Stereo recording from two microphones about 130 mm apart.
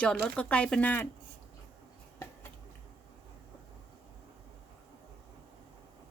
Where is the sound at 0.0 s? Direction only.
10° left (ahead or behind).